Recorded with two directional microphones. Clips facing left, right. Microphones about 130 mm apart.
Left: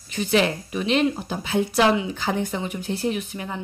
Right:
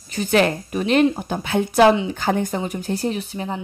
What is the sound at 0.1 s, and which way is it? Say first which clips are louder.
A woman's voice: right 3 dB; 45° right (ahead or behind).